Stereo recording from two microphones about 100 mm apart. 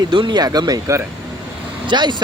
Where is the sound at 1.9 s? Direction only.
50° right (ahead or behind).